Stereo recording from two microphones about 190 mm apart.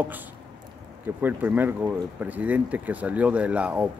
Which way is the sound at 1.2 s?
10° right (ahead or behind).